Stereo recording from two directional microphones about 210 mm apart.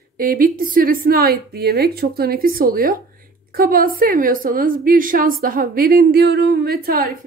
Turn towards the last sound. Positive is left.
turn(degrees=-45)  # may be behind; listen again after turning